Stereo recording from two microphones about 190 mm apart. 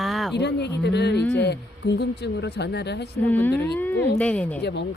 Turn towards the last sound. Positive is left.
turn(degrees=65)  # may be behind; listen again after turning